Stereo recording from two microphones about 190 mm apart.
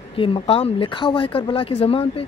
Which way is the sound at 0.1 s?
30° left (ahead or behind).